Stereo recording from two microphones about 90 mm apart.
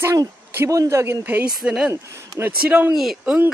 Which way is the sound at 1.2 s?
20° right (ahead or behind).